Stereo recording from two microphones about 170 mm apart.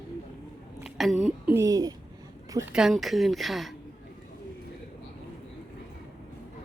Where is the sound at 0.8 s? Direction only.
Centre (ahead or behind).